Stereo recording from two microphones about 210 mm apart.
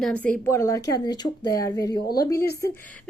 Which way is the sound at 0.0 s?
5° left (ahead or behind).